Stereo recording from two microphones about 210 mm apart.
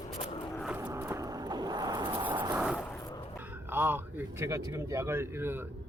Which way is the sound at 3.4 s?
10° right (ahead or behind).